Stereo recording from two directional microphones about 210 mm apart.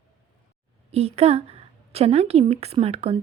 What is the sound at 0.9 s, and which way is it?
A woman's voice, 30° right (ahead or behind).